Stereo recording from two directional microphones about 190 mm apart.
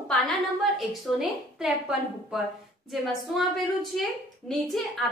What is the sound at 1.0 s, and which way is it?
A woman's voice, centre (ahead or behind).